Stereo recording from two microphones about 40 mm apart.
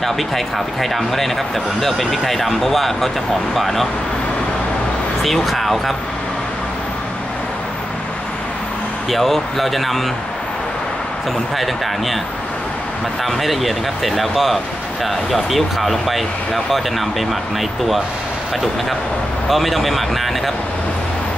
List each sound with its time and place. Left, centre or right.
0.7 s speech: centre
5.2 s speech: centre
9.1 s speech: centre
11.5 s speech: centre
13.2 s speech: centre
19.5 s speech: centre